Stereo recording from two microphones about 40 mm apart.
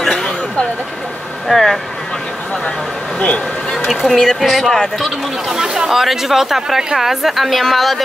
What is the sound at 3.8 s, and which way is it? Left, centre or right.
A woman's voice, centre.